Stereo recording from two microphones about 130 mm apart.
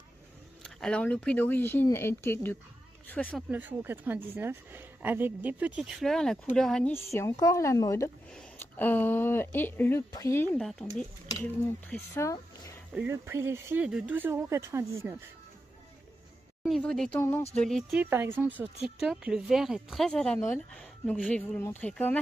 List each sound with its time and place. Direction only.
0.6 s speech: 5° left (ahead or behind)
3.3 s speech: 10° right (ahead or behind)
5.8 s speech: centre (ahead or behind)
6.9 s a woman's voice: 20° left (ahead or behind)
12.1 s a woman's voice: 25° left (ahead or behind)
12.9 s speech: 15° right (ahead or behind)
16.6 s speech: centre (ahead or behind)
17.9 s speech: 15° right (ahead or behind); by 20.3 s 5° left (ahead or behind)
20.3 s a woman's voice: 20° left (ahead or behind)